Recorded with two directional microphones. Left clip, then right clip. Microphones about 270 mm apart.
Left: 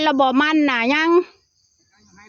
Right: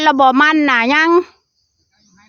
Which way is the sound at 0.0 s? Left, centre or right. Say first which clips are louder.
Right 6 dB; centre.